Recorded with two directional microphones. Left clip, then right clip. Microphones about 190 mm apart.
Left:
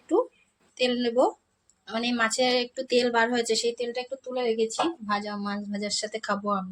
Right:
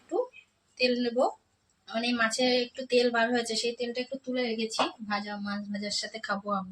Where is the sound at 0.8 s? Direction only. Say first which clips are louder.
Left 3 dB; 50° left (ahead or behind).